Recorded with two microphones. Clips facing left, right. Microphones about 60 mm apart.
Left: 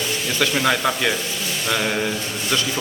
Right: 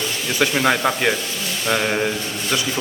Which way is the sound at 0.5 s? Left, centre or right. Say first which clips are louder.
Right 1 dB; centre.